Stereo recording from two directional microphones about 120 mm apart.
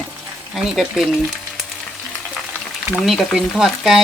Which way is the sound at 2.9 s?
Centre (ahead or behind).